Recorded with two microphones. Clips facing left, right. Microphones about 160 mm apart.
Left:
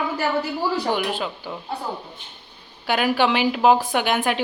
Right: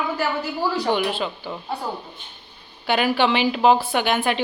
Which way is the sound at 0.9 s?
10° left (ahead or behind).